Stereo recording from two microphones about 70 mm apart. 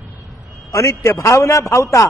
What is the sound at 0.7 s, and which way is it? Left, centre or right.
A man's voice, left.